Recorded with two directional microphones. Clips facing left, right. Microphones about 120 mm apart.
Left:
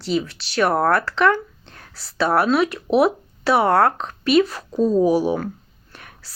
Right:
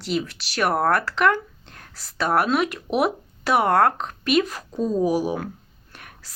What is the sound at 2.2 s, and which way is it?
Speech, 35° left (ahead or behind).